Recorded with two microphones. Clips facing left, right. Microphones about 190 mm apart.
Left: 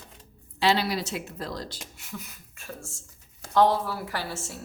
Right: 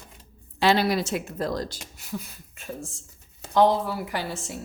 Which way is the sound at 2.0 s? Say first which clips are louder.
Right 8 dB; 35° right (ahead or behind).